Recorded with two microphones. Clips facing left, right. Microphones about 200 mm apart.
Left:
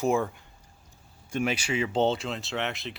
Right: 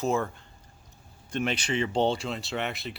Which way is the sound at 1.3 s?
10° left (ahead or behind).